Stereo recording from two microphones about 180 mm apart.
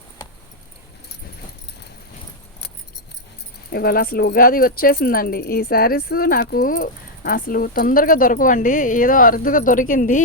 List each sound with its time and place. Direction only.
3.7 s speech: 55° left (ahead or behind)